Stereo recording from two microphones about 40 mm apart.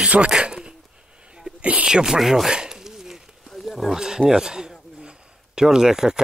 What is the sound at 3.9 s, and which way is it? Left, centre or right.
Wild animals, centre.